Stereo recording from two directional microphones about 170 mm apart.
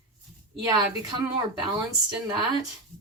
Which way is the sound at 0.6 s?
20° right (ahead or behind).